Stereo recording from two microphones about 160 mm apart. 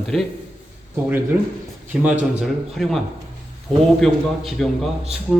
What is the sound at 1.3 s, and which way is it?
A man's voice, 15° right (ahead or behind).